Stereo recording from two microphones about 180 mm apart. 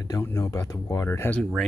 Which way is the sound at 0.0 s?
15° left (ahead or behind).